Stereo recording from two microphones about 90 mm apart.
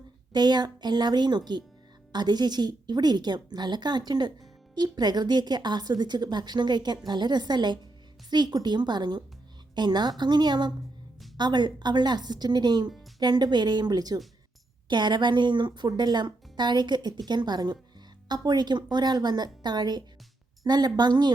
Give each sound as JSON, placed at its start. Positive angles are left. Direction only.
{"t": 0.3, "sound": "a woman's voice", "side_deg": -50}